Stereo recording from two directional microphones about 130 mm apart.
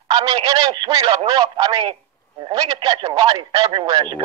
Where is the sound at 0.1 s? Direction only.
30° right (ahead or behind).